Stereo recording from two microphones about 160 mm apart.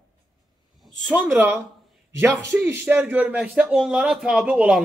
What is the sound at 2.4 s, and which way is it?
Speech, 15° right (ahead or behind).